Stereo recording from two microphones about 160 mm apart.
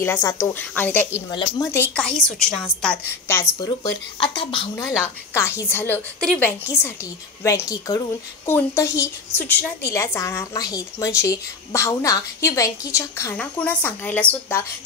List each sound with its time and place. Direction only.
0.0 s a woman's voice: 15° left (ahead or behind)
1.3 s a woman's voice: 30° left (ahead or behind)
1.7 s a woman's voice: 10° left (ahead or behind)
3.3 s a woman's voice: 20° left (ahead or behind)
5.0 s a woman's voice: 15° left (ahead or behind)